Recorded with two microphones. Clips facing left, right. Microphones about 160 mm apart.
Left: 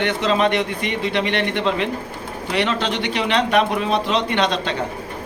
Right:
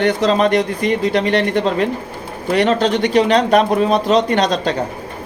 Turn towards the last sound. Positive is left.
turn(degrees=-40)  # may be behind; listen again after turning